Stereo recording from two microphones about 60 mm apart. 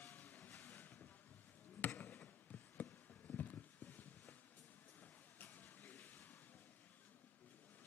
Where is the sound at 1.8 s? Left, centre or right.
Left.